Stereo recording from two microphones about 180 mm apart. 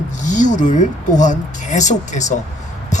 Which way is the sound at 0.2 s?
45° left (ahead or behind).